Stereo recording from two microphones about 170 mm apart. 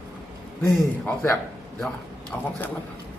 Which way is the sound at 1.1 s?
15° left (ahead or behind).